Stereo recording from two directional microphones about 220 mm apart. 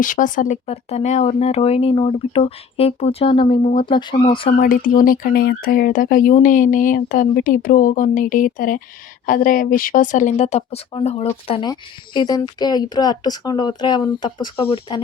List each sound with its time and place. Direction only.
0.0 s speech: 35° left (ahead or behind)
4.5 s speech: 40° left (ahead or behind); by 15.0 s 20° left (ahead or behind)